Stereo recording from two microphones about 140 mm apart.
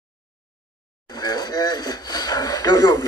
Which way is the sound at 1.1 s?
30° left (ahead or behind).